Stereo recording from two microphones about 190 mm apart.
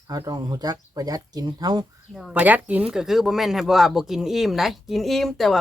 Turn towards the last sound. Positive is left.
turn(degrees=0)  # may be behind; listen again after turning